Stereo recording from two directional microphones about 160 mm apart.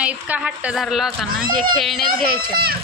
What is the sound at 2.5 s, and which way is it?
Speech, 75° right (ahead or behind).